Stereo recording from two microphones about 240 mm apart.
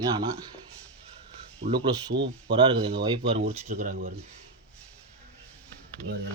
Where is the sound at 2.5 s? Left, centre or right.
Right.